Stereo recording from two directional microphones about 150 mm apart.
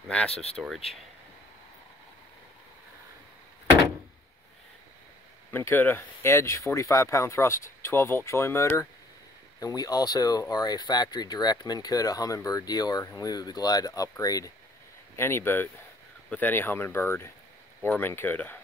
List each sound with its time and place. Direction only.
0.3 s speech: 45° left (ahead or behind)
0.6 s speech: centre (ahead or behind)
5.5 s speech: 15° left (ahead or behind)